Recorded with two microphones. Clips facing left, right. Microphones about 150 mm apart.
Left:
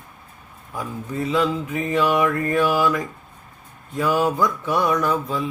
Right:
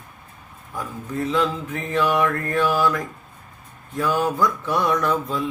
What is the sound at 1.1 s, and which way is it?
Mantra, 5° left (ahead or behind).